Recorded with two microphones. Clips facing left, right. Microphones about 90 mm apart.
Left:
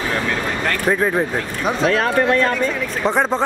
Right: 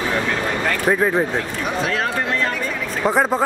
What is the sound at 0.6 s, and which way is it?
Speech, 5° right (ahead or behind).